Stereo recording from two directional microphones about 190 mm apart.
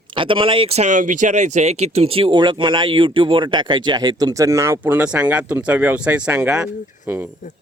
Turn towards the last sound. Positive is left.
turn(degrees=-10)  # may be behind; listen again after turning